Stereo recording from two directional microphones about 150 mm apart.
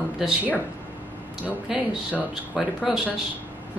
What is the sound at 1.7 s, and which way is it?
Speech, 5° right (ahead or behind).